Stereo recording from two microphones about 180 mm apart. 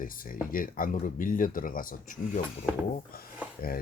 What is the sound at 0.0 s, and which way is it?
Speech, 50° left (ahead or behind).